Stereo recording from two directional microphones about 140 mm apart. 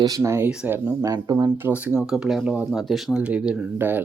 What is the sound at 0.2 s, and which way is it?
Speech, 15° right (ahead or behind).